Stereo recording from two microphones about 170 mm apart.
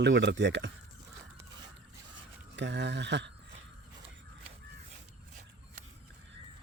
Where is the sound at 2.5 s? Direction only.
90° right.